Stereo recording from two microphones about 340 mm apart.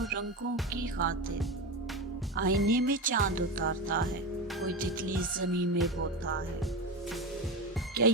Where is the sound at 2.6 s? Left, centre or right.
Right.